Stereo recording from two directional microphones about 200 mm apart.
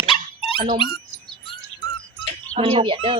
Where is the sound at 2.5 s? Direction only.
25° right (ahead or behind).